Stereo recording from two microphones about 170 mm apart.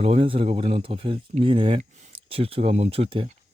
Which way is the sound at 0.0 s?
35° right (ahead or behind).